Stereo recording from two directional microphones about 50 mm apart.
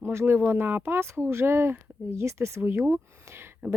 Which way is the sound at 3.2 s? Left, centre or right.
Right.